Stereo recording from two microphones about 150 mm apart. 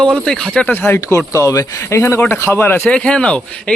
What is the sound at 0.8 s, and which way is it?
Speech, 15° left (ahead or behind).